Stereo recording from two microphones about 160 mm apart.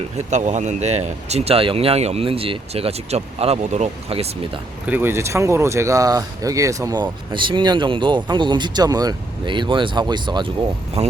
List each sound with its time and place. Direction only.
0.2 s speech: 50° right (ahead or behind)
4.9 s speech: 15° right (ahead or behind)
11.0 s speech: 40° right (ahead or behind)